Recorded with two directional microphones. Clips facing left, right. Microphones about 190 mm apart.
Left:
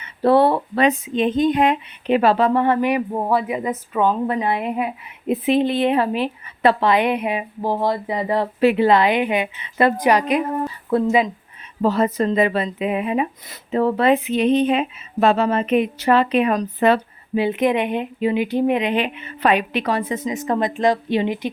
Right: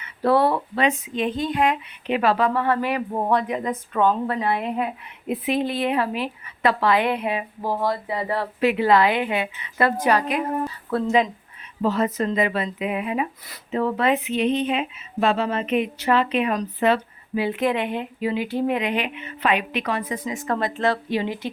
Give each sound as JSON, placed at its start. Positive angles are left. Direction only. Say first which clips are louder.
{"t": 0.0, "sound": "speech", "louder": "left 4 dB", "side_deg": 25}
{"t": 3.1, "sound": "speech", "louder": "left 2 dB", "side_deg": 5}
{"t": 4.3, "sound": "speech", "louder": "left 2 dB", "side_deg": 15}
{"t": 5.3, "sound": "speech", "louder": "left 5 dB", "side_deg": 25}
{"t": 11.0, "sound": "speech", "louder": "left 1 dB", "side_deg": 5}
{"t": 11.8, "sound": "speech", "louder": "left 4 dB", "side_deg": 35}
{"t": 17.3, "sound": "speech", "louder": "left 4 dB", "side_deg": 20}